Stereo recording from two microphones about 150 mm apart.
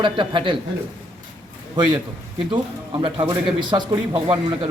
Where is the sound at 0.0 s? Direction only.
35° right (ahead or behind).